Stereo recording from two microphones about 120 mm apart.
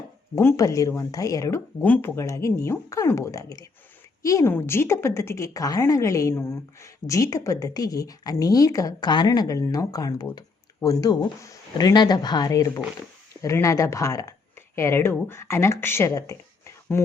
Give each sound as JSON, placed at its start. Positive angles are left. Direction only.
{"t": 0.3, "sound": "speech", "side_deg": 25}